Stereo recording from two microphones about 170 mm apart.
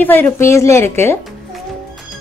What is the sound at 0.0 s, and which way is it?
A woman's voice, 10° left (ahead or behind).